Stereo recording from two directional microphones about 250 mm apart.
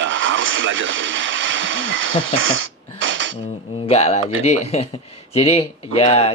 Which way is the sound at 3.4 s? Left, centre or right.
Left.